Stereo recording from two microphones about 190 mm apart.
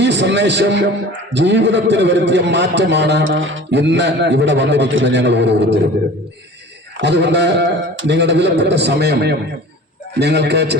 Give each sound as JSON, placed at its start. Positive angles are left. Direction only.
{"t": 0.0, "sound": "a man's voice", "side_deg": -65}
{"t": 6.9, "sound": "a man's voice", "side_deg": -65}